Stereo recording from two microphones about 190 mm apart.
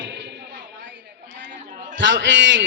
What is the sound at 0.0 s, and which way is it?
Slam, 70° right (ahead or behind).